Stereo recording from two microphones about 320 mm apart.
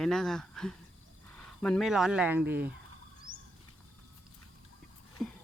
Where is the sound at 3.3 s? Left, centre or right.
Right.